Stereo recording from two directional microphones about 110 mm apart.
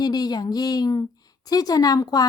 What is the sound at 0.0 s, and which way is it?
Speech, 40° left (ahead or behind).